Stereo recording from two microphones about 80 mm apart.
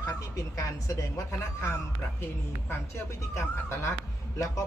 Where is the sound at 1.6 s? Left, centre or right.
Left.